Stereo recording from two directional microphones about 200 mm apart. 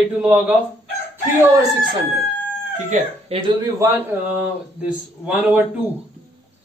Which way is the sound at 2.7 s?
35° right (ahead or behind).